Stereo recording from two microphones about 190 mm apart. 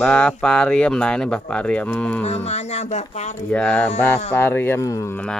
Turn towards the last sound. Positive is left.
turn(degrees=10)  # may be behind; listen again after turning